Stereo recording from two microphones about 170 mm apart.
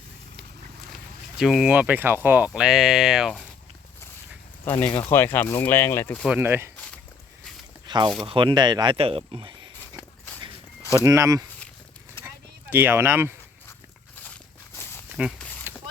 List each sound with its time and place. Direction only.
1.4 s speech: 5° right (ahead or behind)
4.6 s speech: 10° left (ahead or behind)
6.2 s speech: 10° right (ahead or behind)
7.9 s speech: 25° right (ahead or behind)
10.9 s speech: 20° right (ahead or behind)
12.2 s a sound: 15° left (ahead or behind)
12.7 s speech: 15° right (ahead or behind)
15.1 s a sound: 5° right (ahead or behind)